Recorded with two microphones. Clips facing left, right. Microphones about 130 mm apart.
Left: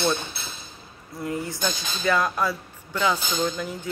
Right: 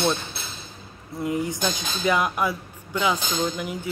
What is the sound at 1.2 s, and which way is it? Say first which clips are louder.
Speech: right 3 dB; 20° right (ahead or behind).